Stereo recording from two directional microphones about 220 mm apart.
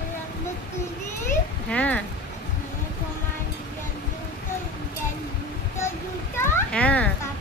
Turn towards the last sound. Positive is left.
turn(degrees=5)  # may be behind; listen again after turning